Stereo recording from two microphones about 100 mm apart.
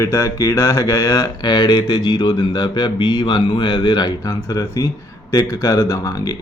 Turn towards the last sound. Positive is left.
turn(degrees=35)  # may be behind; listen again after turning